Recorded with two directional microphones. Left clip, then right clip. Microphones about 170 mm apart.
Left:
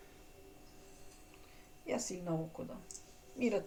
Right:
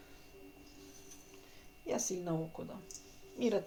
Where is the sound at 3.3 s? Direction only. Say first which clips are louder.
Right 1 dB; 35° right (ahead or behind).